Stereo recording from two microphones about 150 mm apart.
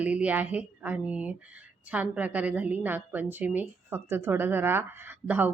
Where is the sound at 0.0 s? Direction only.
10° right (ahead or behind).